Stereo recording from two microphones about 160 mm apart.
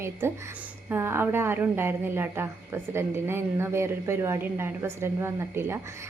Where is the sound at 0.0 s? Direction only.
15° right (ahead or behind).